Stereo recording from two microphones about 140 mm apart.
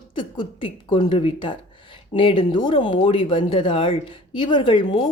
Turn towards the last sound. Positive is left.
turn(degrees=35)  # may be behind; listen again after turning